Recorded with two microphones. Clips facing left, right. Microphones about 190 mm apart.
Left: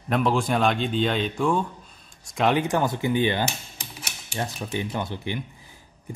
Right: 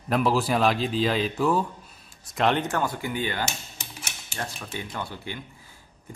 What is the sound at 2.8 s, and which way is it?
Speech, 20° left (ahead or behind).